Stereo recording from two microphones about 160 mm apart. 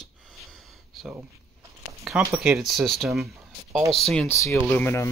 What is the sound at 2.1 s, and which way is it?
Speech, centre (ahead or behind).